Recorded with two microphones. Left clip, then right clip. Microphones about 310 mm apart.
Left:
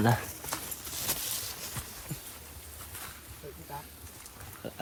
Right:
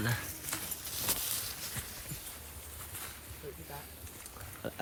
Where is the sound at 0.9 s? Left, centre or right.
Left.